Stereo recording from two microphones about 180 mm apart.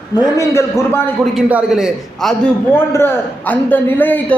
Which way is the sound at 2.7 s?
10° left (ahead or behind).